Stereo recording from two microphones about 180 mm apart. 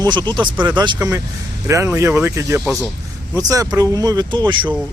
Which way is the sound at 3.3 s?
20° right (ahead or behind).